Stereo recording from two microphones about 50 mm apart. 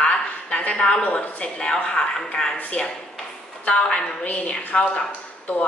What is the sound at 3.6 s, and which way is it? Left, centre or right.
Speech, left.